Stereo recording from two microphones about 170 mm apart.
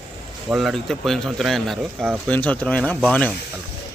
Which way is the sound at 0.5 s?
Centre (ahead or behind).